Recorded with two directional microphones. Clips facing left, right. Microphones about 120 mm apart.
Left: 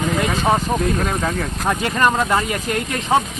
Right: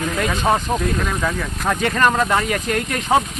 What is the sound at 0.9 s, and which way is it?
Speech, 30° left (ahead or behind).